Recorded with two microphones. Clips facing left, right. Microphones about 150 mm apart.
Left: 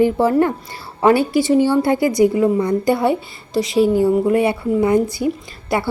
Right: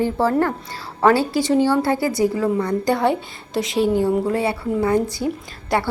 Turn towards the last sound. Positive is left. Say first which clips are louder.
# left 1 dB
turn(degrees=10)  # may be behind; listen again after turning